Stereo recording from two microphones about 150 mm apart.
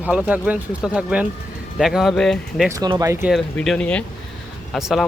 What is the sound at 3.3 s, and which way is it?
Speech, centre (ahead or behind).